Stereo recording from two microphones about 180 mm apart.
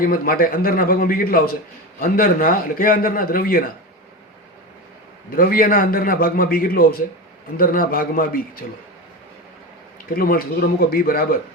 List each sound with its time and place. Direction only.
0.0 s a man's voice: 55° left (ahead or behind)
5.3 s a man's voice: 50° left (ahead or behind)
10.1 s a man's voice: 55° left (ahead or behind)